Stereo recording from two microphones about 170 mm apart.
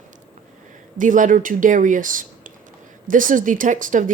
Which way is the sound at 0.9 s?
50° right (ahead or behind).